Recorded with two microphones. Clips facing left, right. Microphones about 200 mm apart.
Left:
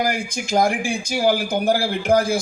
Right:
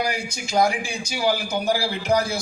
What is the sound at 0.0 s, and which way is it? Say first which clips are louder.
A man's voice: left 4 dB; 50° left (ahead or behind).